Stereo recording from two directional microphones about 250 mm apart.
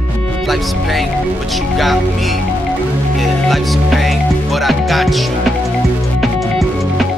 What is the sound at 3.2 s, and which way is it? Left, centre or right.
Music, centre.